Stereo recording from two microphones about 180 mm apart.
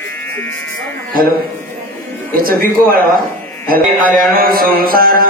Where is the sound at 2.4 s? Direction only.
55° right (ahead or behind).